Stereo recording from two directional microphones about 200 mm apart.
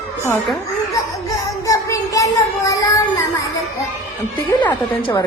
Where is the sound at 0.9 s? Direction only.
15° left (ahead or behind).